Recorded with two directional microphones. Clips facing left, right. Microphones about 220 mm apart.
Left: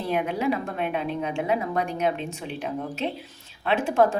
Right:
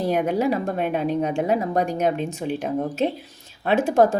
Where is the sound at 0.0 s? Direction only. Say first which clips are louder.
Right 4 dB; 45° right (ahead or behind).